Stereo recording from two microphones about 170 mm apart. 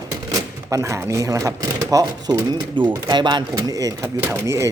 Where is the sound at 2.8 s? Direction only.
10° right (ahead or behind).